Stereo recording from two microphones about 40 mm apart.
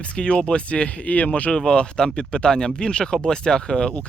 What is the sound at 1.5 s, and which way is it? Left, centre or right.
Speech, centre.